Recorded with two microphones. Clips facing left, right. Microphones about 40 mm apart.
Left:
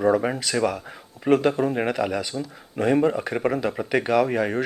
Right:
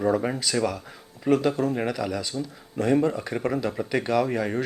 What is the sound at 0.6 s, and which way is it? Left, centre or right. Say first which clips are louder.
Speech: left 3 dB; left.